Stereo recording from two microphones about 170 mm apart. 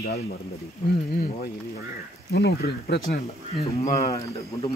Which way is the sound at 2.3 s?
75° left (ahead or behind).